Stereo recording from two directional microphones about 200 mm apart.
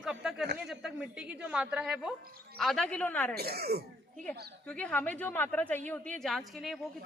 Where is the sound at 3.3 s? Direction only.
50° right (ahead or behind).